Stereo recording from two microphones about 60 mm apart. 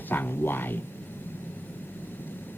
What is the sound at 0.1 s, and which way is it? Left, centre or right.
Speech, left.